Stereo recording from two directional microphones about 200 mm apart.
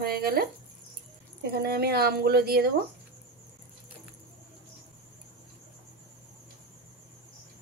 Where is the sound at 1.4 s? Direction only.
50° right (ahead or behind).